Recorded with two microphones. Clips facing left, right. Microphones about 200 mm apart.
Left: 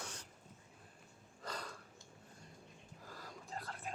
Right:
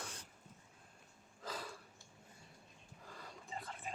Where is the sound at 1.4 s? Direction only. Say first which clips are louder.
Even; centre (ahead or behind).